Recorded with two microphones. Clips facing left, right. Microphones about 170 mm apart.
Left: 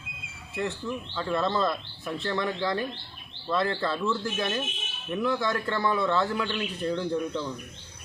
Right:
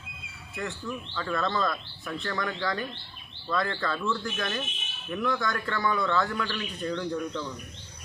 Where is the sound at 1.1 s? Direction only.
25° left (ahead or behind).